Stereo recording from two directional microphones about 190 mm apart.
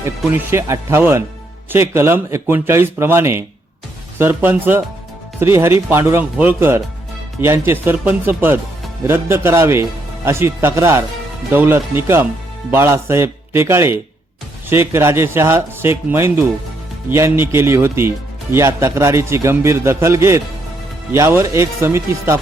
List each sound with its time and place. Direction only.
0.2 s a man's voice: 10° right (ahead or behind)